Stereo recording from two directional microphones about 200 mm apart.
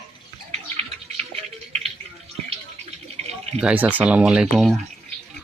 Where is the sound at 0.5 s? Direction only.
30° right (ahead or behind).